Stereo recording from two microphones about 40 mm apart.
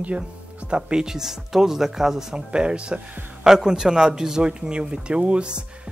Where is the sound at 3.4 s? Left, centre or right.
Centre.